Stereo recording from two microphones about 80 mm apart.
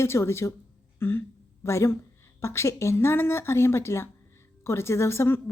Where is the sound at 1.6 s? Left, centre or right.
Left.